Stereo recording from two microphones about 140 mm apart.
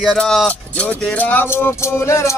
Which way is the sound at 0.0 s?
5° left (ahead or behind).